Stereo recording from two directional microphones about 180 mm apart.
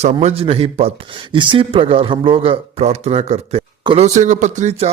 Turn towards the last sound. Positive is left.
turn(degrees=-40)  # may be behind; listen again after turning